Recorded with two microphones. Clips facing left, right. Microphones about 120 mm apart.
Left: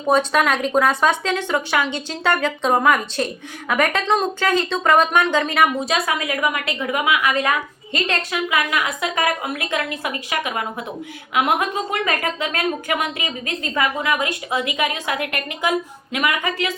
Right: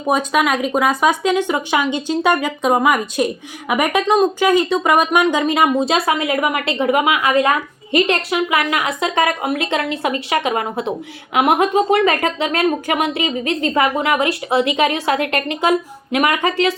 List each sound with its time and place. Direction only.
0.0 s a woman's voice: 5° right (ahead or behind); by 16.6 s 30° right (ahead or behind)